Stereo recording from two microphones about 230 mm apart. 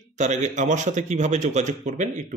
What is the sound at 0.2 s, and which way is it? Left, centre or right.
Speech, right.